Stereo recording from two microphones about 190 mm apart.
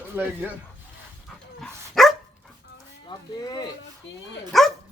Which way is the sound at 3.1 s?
20° left (ahead or behind).